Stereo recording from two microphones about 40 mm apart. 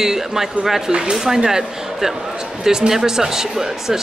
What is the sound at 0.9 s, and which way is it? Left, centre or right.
Speech, centre.